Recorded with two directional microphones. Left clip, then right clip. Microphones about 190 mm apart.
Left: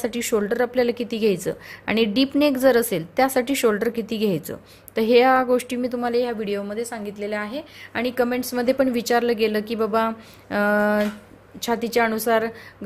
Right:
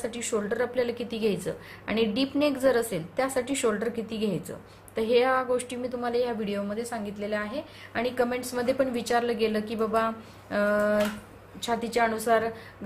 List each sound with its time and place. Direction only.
0.0 s a woman's voice: 40° left (ahead or behind)